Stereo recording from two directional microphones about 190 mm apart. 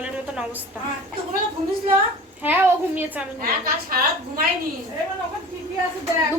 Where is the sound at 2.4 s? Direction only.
10° right (ahead or behind).